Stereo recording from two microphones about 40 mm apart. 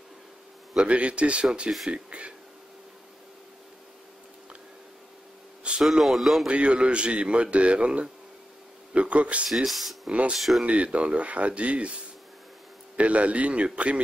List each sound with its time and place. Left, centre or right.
0.7 s a man's voice: right
5.8 s speech: centre
6.4 s a man's voice: right
9.7 s speech: centre
10.6 s speech: right
12.9 s speech: right